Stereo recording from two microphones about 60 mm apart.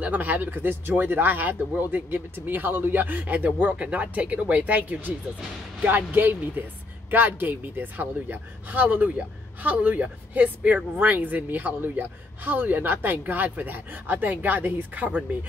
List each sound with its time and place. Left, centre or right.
0.0 s speech: right